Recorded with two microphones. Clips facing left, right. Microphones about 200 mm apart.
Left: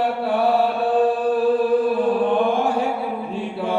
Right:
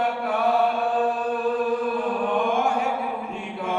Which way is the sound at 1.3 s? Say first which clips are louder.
Left 7 dB; 35° left (ahead or behind).